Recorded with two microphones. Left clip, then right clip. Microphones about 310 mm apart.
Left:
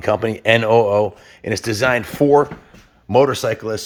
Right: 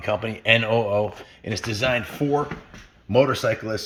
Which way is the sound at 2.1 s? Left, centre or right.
Left.